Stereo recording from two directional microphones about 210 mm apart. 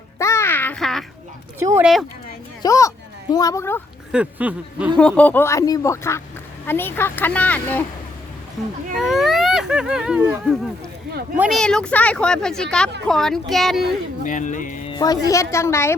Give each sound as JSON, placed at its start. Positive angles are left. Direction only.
{"t": 0.2, "sound": "babbling", "side_deg": 15}
{"t": 1.5, "sound": "speech", "side_deg": -10}
{"t": 2.6, "sound": "speech", "side_deg": 15}
{"t": 4.1, "sound": "speech", "side_deg": -5}
{"t": 4.9, "sound": "speech", "side_deg": 5}
{"t": 9.0, "sound": "speech", "side_deg": 0}
{"t": 14.3, "sound": "speech", "side_deg": 35}
{"t": 14.9, "sound": "speech", "side_deg": 20}